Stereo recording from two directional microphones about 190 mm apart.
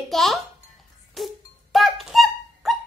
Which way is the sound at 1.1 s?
Centre (ahead or behind).